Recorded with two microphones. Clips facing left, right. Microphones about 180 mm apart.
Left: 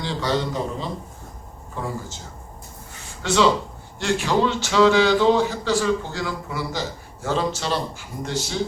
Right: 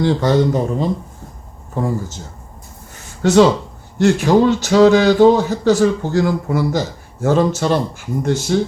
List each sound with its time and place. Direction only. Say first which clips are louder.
0.0 s speech: right 10 dB; 50° right (ahead or behind)
3.2 s speech: right 7 dB; 45° right (ahead or behind)